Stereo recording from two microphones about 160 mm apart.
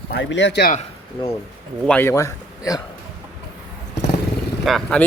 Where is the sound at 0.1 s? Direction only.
90° left.